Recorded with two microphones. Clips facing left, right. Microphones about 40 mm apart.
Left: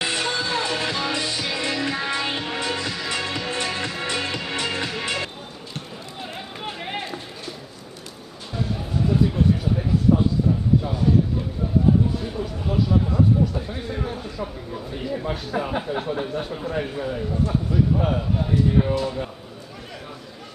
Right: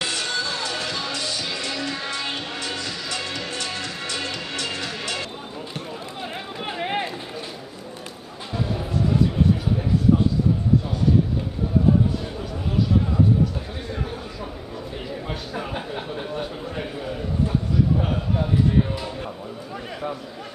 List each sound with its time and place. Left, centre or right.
0.0 s music: left
6.6 s music: centre
15.0 s a sound: centre
18.9 s music: centre